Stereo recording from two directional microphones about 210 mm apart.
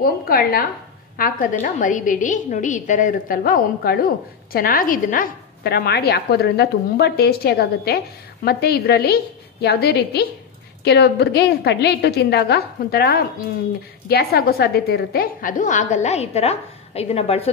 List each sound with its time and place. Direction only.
0.0 s a woman's voice: 45° left (ahead or behind); by 17.5 s 30° left (ahead or behind)